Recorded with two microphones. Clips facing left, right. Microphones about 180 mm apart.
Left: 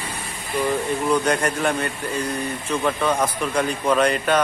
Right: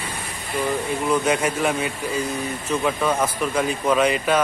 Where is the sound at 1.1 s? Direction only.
5° right (ahead or behind).